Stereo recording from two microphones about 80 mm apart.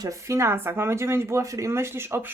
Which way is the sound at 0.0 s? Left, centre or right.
Right.